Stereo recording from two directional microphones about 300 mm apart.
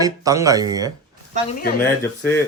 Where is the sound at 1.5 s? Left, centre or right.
Left.